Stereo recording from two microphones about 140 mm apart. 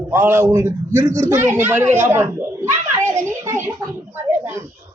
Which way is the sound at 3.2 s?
20° right (ahead or behind).